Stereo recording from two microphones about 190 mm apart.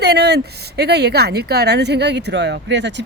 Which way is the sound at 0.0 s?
60° right (ahead or behind).